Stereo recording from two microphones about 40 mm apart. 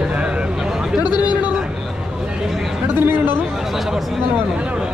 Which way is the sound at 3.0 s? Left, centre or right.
Right.